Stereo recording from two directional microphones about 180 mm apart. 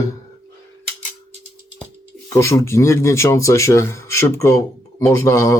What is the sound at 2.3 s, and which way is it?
Speech, 15° left (ahead or behind).